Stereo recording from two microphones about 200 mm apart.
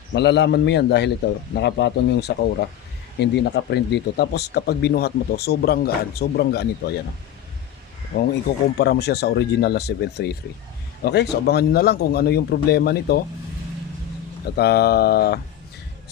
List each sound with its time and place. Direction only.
0.1 s speech: 60° left (ahead or behind)
8.1 s speech: 55° left (ahead or behind)
14.5 s speech: 55° left (ahead or behind)